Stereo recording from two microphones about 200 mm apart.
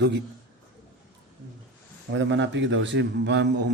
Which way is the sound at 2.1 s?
65° right (ahead or behind).